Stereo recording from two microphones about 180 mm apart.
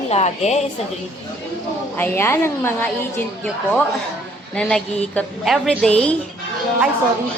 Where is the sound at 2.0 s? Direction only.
15° left (ahead or behind).